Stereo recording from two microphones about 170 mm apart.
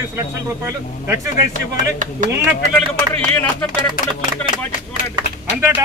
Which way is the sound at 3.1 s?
10° left (ahead or behind).